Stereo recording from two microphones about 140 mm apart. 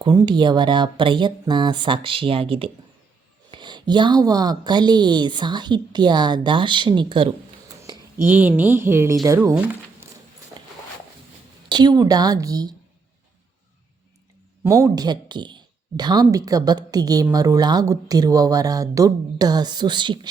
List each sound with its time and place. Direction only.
0.0 s a woman's voice: 35° right (ahead or behind)
7.8 s speech: 20° right (ahead or behind)
11.7 s speech: 30° right (ahead or behind)
14.6 s speech: 20° right (ahead or behind)